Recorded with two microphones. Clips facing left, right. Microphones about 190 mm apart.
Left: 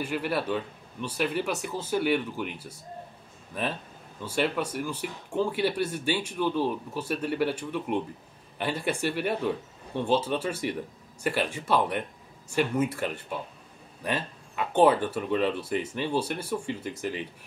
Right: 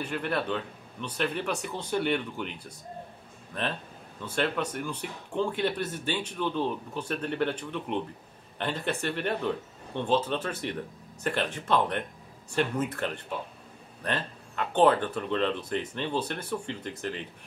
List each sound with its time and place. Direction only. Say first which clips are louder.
0.0 s speech: left 2 dB; 5° left (ahead or behind)